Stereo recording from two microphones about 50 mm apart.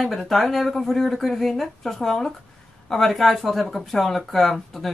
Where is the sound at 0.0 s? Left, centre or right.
Centre.